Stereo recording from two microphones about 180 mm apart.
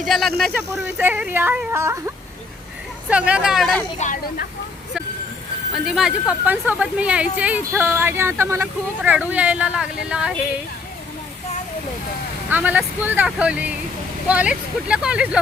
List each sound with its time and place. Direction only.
0.0 s speech: centre (ahead or behind)
0.5 s a woman's voice: 10° right (ahead or behind)
4.0 s speech: 50° left (ahead or behind)
5.7 s a woman's voice: centre (ahead or behind)
12.5 s a woman's voice: 10° right (ahead or behind)